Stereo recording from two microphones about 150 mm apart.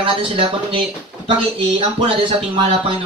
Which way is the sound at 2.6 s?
35° right (ahead or behind).